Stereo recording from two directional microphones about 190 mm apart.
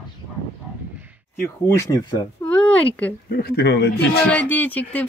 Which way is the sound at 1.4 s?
15° left (ahead or behind).